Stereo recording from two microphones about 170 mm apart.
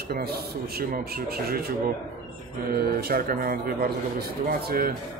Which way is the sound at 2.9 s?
65° right (ahead or behind).